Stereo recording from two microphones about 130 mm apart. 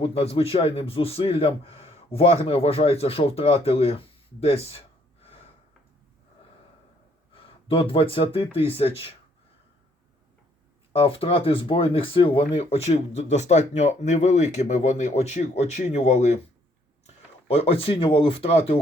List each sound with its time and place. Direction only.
0.0 s a man's voice: 50° left (ahead or behind)
7.3 s speech: 45° left (ahead or behind)
11.0 s speech: 45° left (ahead or behind); by 16.4 s 60° left (ahead or behind)
17.5 s a man's voice: 50° left (ahead or behind)